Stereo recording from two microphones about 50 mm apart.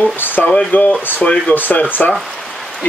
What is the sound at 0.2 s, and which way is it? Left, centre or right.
Speech, left.